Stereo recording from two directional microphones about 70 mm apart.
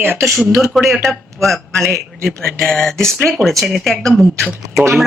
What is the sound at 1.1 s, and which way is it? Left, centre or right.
Speech, centre.